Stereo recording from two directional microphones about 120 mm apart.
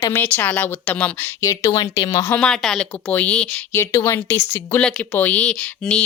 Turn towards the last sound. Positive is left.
turn(degrees=5)  # may be behind; listen again after turning